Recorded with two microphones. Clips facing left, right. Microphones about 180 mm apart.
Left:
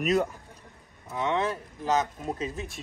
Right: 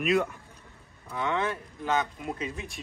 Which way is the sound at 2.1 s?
40° left (ahead or behind).